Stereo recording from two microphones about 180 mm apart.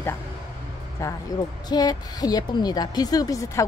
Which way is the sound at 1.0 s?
15° left (ahead or behind).